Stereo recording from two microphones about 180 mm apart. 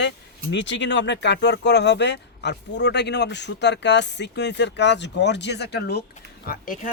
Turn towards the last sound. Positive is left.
turn(degrees=55)  # may be behind; listen again after turning